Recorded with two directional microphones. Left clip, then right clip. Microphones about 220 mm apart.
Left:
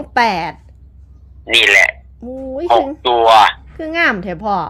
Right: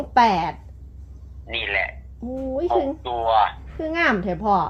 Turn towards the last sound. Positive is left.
turn(degrees=35)  # may be behind; listen again after turning